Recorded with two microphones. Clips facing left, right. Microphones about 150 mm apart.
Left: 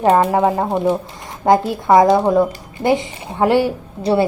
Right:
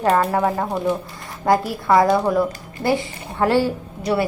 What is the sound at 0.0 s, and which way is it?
A woman's voice, 15° left (ahead or behind).